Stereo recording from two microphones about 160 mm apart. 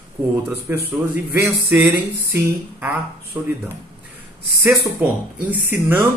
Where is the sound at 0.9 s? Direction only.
15° right (ahead or behind).